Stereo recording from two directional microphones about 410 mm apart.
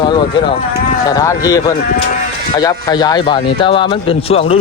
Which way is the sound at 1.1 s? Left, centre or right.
Centre.